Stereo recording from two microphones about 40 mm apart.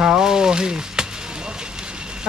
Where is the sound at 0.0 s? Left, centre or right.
Centre.